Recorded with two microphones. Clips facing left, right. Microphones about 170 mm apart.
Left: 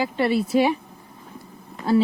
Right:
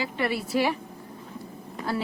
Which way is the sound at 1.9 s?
20° left (ahead or behind).